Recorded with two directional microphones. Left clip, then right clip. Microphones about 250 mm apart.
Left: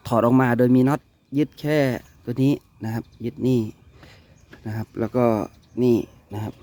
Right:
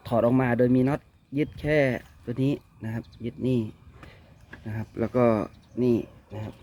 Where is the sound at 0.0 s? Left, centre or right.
Left.